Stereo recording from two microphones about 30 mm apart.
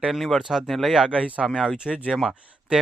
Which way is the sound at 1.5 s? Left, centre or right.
Centre.